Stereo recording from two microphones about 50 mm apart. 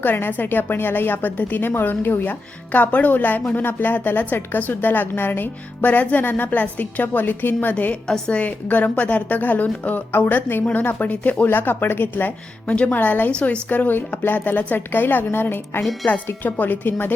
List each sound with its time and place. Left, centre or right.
0.0 s a woman's voice: left
11.4 s a woman's voice: left
12.6 s a woman's voice: left
13.3 s a woman's voice: left
13.7 s a woman's voice: left
16.2 s a woman's voice: left